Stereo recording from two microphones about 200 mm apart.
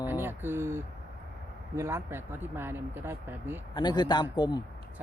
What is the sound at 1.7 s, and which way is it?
Speech, 15° right (ahead or behind).